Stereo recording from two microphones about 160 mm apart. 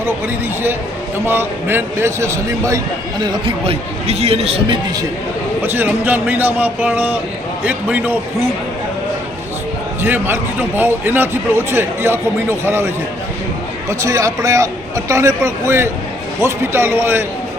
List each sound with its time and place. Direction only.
1.3 s a man's voice: 15° right (ahead or behind)
3.3 s speech: 35° right (ahead or behind)
5.6 s a man's voice: 15° right (ahead or behind)
10.0 s a man's voice: 15° right (ahead or behind)
14.0 s a man's voice: 20° right (ahead or behind)